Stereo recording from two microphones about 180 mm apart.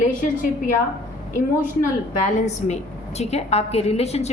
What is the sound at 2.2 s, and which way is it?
A woman's voice, 40° left (ahead or behind).